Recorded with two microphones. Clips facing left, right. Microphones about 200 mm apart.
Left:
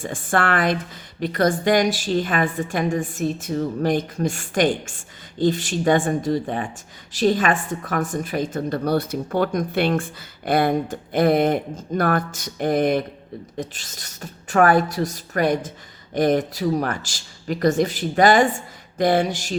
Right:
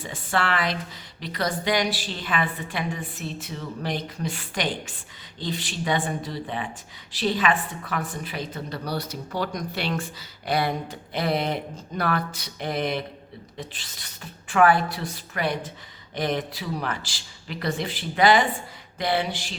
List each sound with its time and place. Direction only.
0.0 s a woman's voice: 50° left (ahead or behind)